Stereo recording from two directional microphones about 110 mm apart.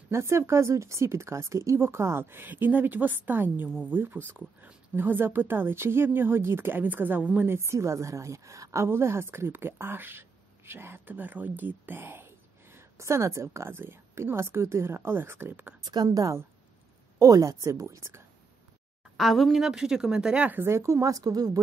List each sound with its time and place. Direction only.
0.1 s a woman's voice: 25° right (ahead or behind)
15.8 s a woman's voice: 40° right (ahead or behind)
19.1 s a woman's voice: centre (ahead or behind)
20.6 s a woman's voice: 25° right (ahead or behind)